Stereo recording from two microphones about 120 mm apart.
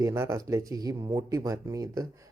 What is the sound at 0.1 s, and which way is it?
Speech, 25° right (ahead or behind).